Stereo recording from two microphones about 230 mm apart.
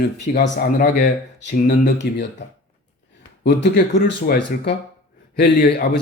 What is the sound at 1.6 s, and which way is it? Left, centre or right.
Speech, left.